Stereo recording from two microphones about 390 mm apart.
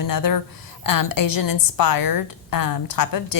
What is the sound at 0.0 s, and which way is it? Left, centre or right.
A woman's voice, left.